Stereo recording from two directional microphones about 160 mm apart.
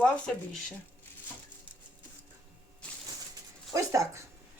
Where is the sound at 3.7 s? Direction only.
20° right (ahead or behind).